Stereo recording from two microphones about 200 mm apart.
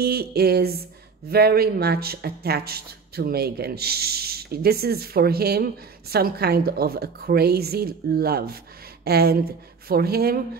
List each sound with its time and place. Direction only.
0.0 s speech: 50° right (ahead or behind)